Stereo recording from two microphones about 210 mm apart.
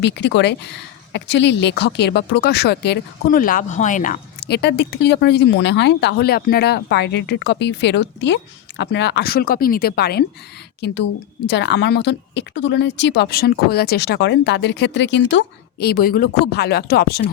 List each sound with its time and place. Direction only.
0.0 s speech: 55° left (ahead or behind)